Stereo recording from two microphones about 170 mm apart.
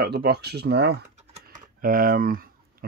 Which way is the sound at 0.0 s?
70° right (ahead or behind).